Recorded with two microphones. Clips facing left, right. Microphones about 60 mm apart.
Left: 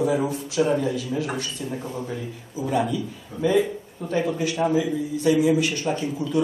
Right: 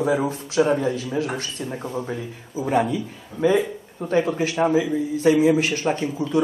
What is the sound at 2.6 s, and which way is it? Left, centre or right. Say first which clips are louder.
A man's voice: right 2 dB; right.